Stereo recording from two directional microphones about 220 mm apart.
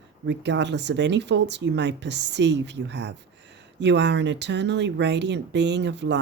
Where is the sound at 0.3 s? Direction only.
50° right (ahead or behind).